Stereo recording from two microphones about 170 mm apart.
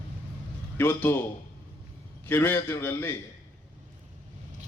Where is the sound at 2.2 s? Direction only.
10° left (ahead or behind).